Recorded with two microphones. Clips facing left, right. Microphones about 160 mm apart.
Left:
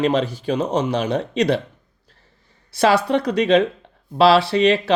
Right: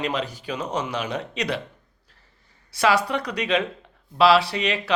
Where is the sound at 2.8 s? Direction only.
30° left (ahead or behind).